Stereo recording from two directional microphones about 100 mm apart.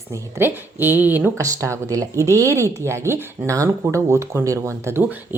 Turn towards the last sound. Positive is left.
turn(degrees=-20)  # may be behind; listen again after turning